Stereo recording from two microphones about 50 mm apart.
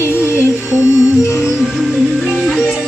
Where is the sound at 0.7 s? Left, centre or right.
Right.